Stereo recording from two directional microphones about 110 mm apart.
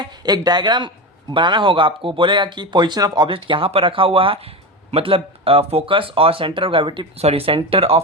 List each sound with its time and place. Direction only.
0.0 s speech: 40° right (ahead or behind)
7.2 s speech: 65° right (ahead or behind)